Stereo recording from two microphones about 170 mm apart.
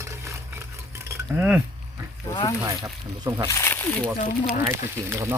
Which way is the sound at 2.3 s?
25° left (ahead or behind).